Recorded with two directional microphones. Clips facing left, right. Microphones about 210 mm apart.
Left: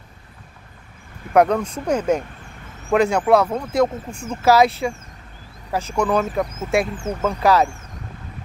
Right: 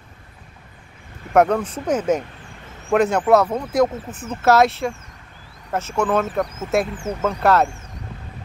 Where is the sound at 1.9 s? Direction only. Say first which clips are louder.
Even; 5° right (ahead or behind).